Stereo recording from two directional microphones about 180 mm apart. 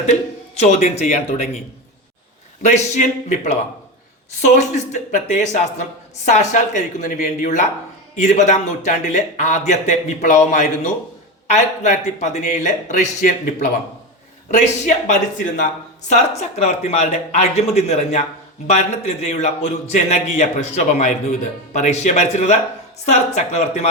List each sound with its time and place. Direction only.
0.0 s a man's voice: 40° left (ahead or behind)
2.6 s a man's voice: 40° left (ahead or behind)